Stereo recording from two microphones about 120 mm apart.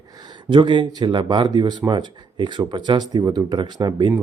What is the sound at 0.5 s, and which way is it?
Speech, 40° right (ahead or behind).